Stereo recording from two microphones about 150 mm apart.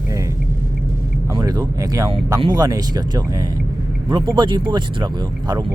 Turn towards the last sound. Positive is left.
turn(degrees=-30)  # may be behind; listen again after turning